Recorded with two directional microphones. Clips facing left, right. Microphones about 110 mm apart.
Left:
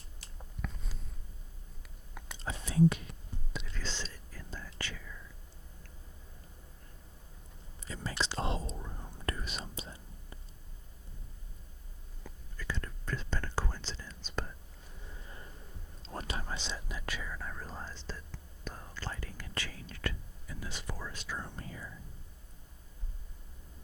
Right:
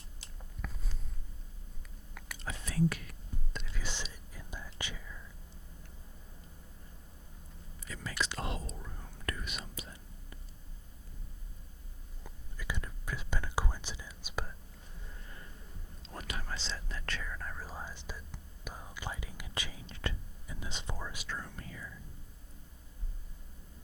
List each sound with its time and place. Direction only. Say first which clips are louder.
0.2 s biting: left 1 dB; 20° right (ahead or behind)
0.6 s a sound: left 2 dB; centre (ahead or behind)
2.1 s whispering: left 2 dB; 25° left (ahead or behind)
3.7 s whispering: even; 10° right (ahead or behind)
7.8 s whispering: left 1 dB; 30° left (ahead or behind)
9.2 s whispering: left 2 dB; 30° left (ahead or behind)
12.2 s whispering: left 1 dB; 15° right (ahead or behind)
15.1 s a sound: left 2 dB; 20° left (ahead or behind)
16.0 s whispering: left 3 dB; 30° left (ahead or behind); by 21.2 s 15° right (ahead or behind)
21.4 s whispering: left 2 dB; 30° left (ahead or behind)